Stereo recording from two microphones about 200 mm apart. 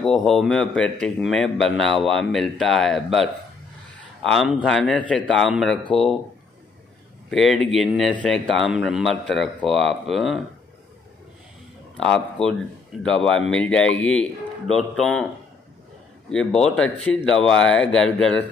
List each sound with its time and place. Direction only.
0.0 s speech: centre (ahead or behind)
7.2 s speech: centre (ahead or behind)
12.0 s speech: 5° left (ahead or behind)
16.3 s speech: 5° left (ahead or behind)